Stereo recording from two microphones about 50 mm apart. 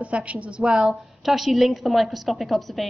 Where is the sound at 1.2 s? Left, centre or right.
Centre.